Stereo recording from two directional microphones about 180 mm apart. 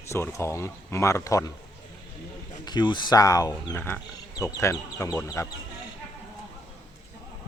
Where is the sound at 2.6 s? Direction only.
25° left (ahead or behind).